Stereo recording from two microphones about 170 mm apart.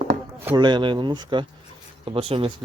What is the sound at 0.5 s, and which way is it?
Speech, 25° right (ahead or behind).